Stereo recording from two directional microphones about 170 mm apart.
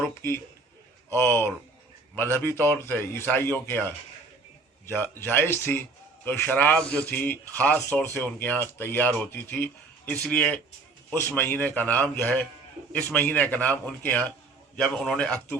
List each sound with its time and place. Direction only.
0.1 s a sound: 15° left (ahead or behind)
1.1 s speech: 15° left (ahead or behind)
5.2 s a man's voice: 10° left (ahead or behind)